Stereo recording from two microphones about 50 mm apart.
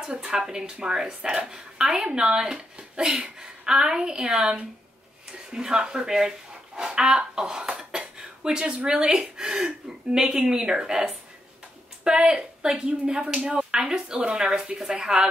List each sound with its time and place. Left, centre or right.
0.0 s a woman's voice: centre